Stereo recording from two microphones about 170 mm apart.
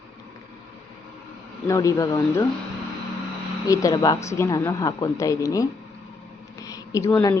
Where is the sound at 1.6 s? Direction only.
20° left (ahead or behind).